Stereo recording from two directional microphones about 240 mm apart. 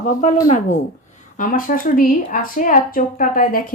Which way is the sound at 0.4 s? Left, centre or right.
Left.